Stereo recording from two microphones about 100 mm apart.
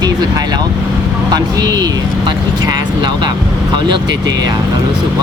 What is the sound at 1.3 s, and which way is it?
Speech, 40° right (ahead or behind).